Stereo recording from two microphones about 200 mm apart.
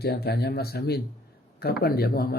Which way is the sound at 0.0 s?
55° left (ahead or behind).